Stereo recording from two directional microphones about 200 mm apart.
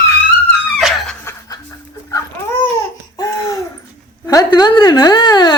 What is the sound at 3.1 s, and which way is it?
Laughter, 15° left (ahead or behind).